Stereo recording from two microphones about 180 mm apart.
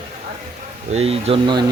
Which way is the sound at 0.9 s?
35° right (ahead or behind).